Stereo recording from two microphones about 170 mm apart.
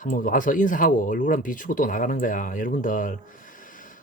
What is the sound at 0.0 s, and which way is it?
Speech, 50° left (ahead or behind).